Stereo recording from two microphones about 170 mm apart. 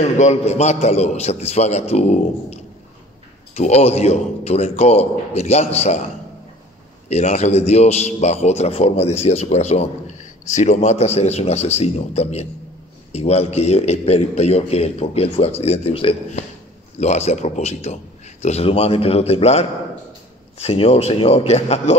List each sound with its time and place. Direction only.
0.0 s a man's voice: 40° left (ahead or behind)
7.1 s a man's voice: 40° left (ahead or behind)